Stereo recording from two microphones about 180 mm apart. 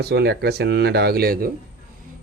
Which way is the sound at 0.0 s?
65° right (ahead or behind).